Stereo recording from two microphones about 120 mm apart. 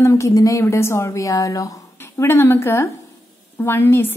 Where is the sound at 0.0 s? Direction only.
25° left (ahead or behind).